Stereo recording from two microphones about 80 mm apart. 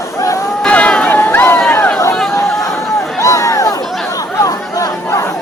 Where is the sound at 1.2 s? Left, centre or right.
Left.